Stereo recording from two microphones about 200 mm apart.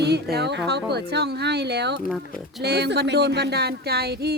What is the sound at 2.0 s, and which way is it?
Speech, centre (ahead or behind).